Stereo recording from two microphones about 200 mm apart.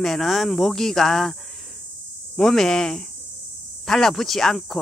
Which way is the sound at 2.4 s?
Centre (ahead or behind).